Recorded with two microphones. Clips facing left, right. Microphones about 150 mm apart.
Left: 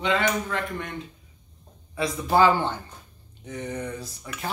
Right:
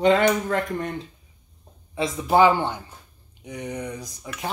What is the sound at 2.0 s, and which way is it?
Speech, 20° right (ahead or behind).